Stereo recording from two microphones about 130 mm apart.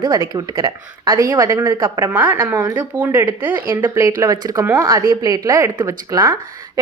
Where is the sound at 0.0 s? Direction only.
25° right (ahead or behind).